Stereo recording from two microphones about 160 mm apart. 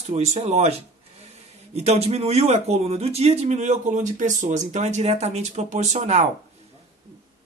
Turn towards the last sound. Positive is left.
turn(degrees=-45)  # may be behind; listen again after turning